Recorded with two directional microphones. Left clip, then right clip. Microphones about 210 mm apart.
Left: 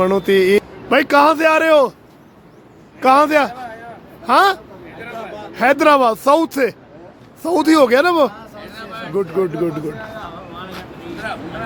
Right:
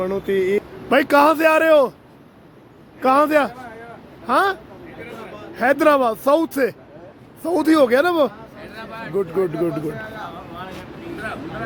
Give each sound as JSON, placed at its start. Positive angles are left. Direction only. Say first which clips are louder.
{"t": 0.0, "sound": "speech", "louder": "left 7 dB", "side_deg": 20}
{"t": 0.9, "sound": "speech", "louder": "left 2 dB", "side_deg": -5}
{"t": 3.0, "sound": "speech", "louder": "left 4 dB", "side_deg": 0}
{"t": 5.5, "sound": "speech", "louder": "left 3 dB", "side_deg": 5}
{"t": 8.7, "sound": "a sound", "louder": "left 2 dB", "side_deg": -10}
{"t": 9.1, "sound": "speech", "louder": "left 2 dB", "side_deg": 0}